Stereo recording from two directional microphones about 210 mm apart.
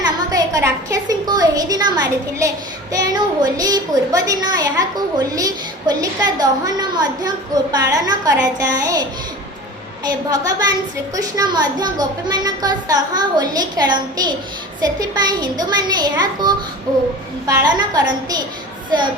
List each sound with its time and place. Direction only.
0.0 s a woman's voice: 15° right (ahead or behind)